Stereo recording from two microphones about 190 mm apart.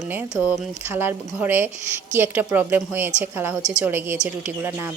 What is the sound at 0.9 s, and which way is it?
Speech, 10° right (ahead or behind).